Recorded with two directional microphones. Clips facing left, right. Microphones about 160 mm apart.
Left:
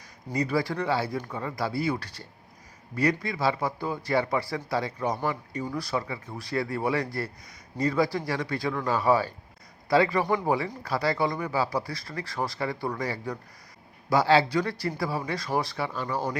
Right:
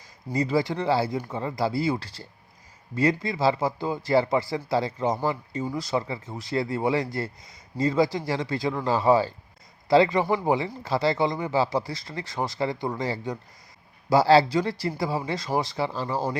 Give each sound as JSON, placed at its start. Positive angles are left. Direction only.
{"t": 0.3, "sound": "speech", "side_deg": -25}